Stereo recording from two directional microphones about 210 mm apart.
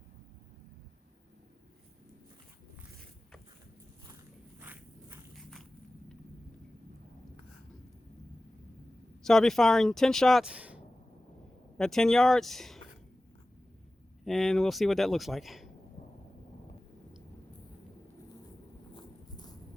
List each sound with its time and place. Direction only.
4.6 s walk: 10° right (ahead or behind)
5.3 s walk: centre (ahead or behind)
9.2 s speech: centre (ahead or behind)
11.8 s speech: centre (ahead or behind)
14.3 s speech: centre (ahead or behind)
18.9 s a sound: 20° left (ahead or behind)